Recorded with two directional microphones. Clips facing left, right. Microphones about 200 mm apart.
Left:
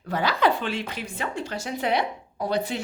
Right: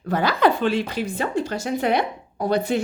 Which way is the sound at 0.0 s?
50° right (ahead or behind).